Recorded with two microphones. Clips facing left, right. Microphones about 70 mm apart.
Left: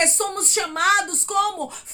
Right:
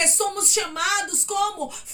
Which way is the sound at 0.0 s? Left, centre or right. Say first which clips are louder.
Left 2 dB; left.